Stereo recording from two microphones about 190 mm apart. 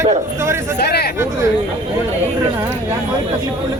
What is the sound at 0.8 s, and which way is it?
Speech, 55° left (ahead or behind).